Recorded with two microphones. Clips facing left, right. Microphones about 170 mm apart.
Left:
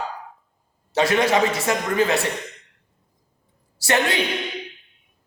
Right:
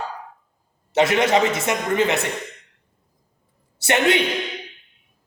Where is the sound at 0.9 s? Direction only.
20° right (ahead or behind).